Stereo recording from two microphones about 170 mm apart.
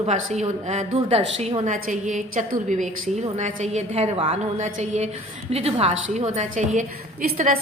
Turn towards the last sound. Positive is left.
turn(degrees=-50)  # may be behind; listen again after turning